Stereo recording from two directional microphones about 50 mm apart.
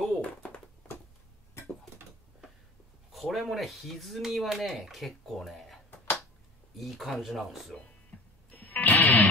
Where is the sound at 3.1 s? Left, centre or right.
Centre.